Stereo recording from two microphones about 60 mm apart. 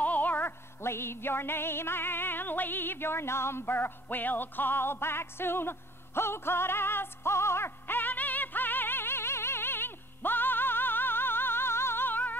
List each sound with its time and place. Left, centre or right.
0.0 s music: left